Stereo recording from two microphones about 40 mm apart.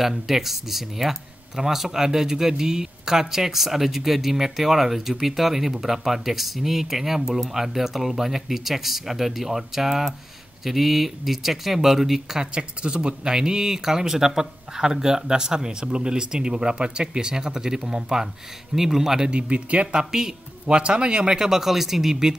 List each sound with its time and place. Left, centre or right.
0.0 s speech: centre
12.4 s speech: right
19.2 s speech: right; by 22.3 s centre